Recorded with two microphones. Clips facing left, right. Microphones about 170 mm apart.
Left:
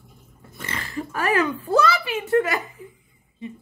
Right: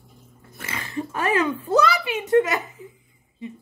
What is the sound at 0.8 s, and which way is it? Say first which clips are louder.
Speech: right 1 dB; 20° right (ahead or behind).